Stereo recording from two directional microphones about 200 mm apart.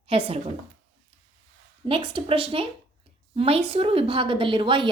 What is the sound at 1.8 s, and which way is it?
A woman's voice, 25° right (ahead or behind).